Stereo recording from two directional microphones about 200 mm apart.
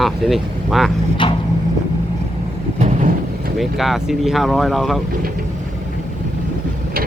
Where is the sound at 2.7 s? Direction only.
35° right (ahead or behind).